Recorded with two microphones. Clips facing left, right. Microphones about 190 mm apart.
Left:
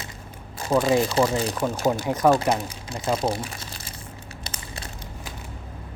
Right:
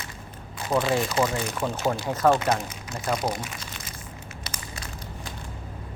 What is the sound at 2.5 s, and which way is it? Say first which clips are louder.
Speech: left 2 dB; 25° left (ahead or behind).